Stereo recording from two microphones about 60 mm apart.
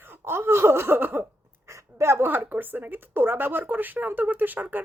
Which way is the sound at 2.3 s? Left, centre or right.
Right.